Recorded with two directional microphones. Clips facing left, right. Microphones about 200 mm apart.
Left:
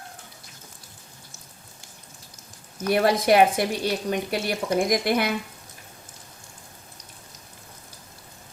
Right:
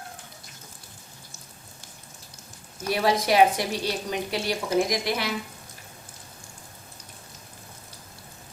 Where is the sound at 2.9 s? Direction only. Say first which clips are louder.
Left 4 dB; 55° left (ahead or behind).